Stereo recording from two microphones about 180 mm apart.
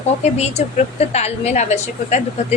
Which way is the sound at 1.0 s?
35° left (ahead or behind).